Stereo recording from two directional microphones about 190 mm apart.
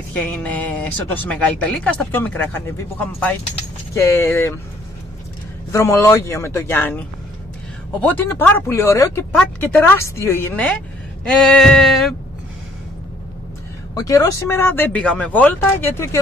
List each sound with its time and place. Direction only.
0.3 s speech: 10° left (ahead or behind)
5.7 s speech: 15° left (ahead or behind)
11.2 s a sound: 5° left (ahead or behind)
13.9 s speech: 20° left (ahead or behind)